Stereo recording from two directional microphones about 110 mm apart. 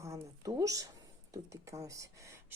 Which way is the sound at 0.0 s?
30° right (ahead or behind).